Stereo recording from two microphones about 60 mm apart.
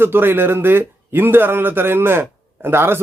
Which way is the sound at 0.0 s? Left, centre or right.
Right.